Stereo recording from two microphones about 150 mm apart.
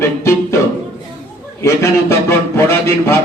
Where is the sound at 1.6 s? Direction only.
20° left (ahead or behind).